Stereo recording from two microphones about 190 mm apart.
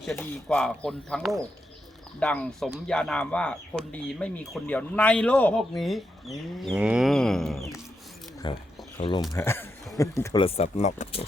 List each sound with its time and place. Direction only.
0.0 s speech: 5° left (ahead or behind)
8.4 s speech: 25° left (ahead or behind)
9.3 s speech: 10° left (ahead or behind)
10.4 s speech: 35° left (ahead or behind)